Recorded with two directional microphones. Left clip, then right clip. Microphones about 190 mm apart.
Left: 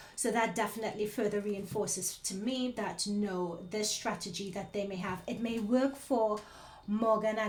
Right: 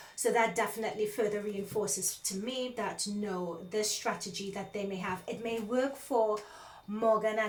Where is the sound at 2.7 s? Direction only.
45° left (ahead or behind).